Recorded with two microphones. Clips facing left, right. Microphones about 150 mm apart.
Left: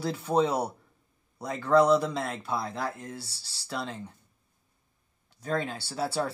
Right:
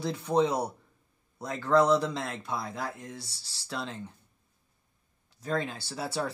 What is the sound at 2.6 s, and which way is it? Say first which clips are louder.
Speech: left 3 dB; 30° left (ahead or behind).